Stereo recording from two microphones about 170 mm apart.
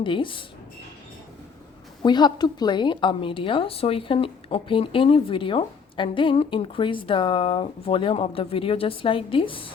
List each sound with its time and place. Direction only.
0.0 s speech: 30° left (ahead or behind)
2.0 s a woman's voice: 25° left (ahead or behind)